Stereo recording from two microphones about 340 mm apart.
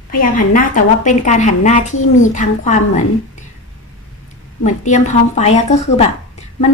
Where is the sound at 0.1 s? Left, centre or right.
Left.